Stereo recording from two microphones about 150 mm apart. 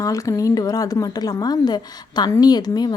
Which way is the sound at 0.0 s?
20° left (ahead or behind).